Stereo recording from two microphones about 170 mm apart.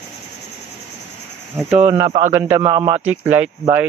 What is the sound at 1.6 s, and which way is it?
Speech, 10° right (ahead or behind).